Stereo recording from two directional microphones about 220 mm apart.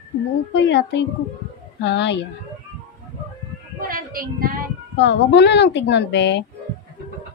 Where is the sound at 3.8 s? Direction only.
40° right (ahead or behind).